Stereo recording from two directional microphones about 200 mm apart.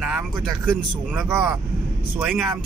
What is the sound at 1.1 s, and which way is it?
Speech, 10° right (ahead or behind).